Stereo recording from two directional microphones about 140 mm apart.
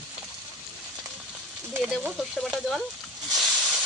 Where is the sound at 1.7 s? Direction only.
10° right (ahead or behind).